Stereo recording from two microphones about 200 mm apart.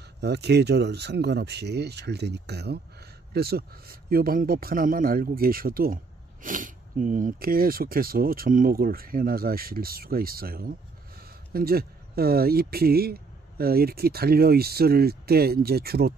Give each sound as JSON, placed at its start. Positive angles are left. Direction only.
{"t": 0.2, "sound": "speech", "side_deg": -55}